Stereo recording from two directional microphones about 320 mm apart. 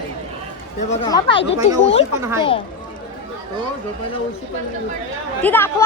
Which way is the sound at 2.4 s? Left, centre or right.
Centre.